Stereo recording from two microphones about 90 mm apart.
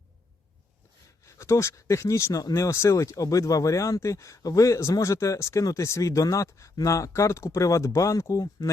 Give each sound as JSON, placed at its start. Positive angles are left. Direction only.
{"t": 1.2, "sound": "speech", "side_deg": 35}